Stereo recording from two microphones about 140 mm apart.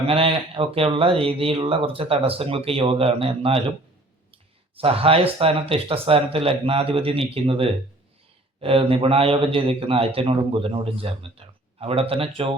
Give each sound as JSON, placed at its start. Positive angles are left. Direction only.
{"t": 0.1, "sound": "speech", "side_deg": -45}
{"t": 4.8, "sound": "a man's voice", "side_deg": -45}